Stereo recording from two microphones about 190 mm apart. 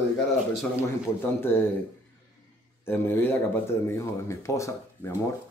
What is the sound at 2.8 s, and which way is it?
Speech, 10° left (ahead or behind).